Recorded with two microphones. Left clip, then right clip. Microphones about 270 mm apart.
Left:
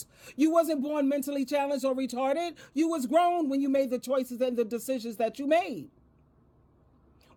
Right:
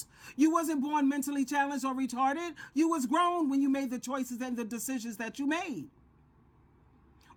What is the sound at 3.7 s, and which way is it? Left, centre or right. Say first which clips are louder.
Speech: left 7 dB; centre.